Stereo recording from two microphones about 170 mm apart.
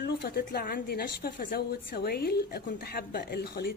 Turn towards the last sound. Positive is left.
turn(degrees=70)  # may be behind; listen again after turning